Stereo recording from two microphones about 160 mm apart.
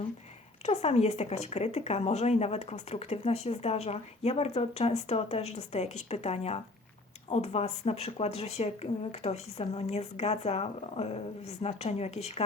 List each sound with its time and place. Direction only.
0.6 s speech: 45° left (ahead or behind)